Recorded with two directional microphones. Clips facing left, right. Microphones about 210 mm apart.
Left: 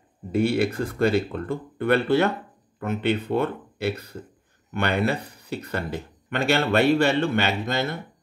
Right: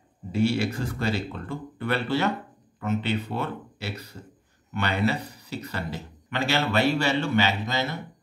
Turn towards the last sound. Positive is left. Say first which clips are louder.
# left 2 dB
turn(degrees=55)  # may be behind; listen again after turning